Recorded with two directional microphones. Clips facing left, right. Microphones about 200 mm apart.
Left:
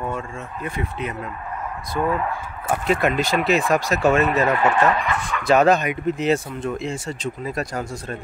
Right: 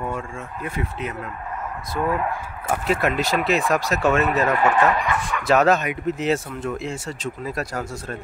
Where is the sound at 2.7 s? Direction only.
5° right (ahead or behind).